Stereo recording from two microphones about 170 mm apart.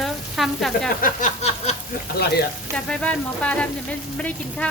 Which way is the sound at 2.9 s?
5° left (ahead or behind).